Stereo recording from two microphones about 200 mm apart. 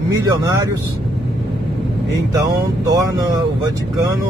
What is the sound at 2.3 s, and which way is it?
Speech, 15° right (ahead or behind).